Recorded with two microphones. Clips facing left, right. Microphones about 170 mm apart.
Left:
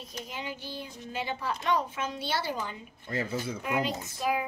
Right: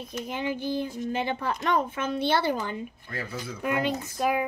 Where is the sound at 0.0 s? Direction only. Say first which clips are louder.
Right 8 dB; 55° right (ahead or behind).